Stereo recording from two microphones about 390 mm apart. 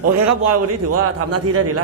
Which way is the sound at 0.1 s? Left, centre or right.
Right.